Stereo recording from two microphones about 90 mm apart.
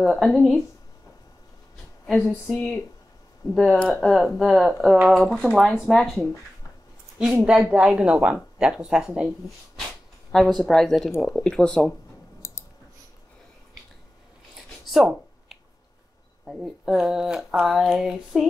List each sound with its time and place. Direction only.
0.0 s speech: 5° left (ahead or behind)
2.0 s speech: centre (ahead or behind)
4.0 s speech: centre (ahead or behind)
7.7 s speech: 10° right (ahead or behind)
10.3 s speech: centre (ahead or behind)
12.4 s clicking: 25° left (ahead or behind)
14.9 s a sound: 5° right (ahead or behind)
16.4 s speech: 5° right (ahead or behind)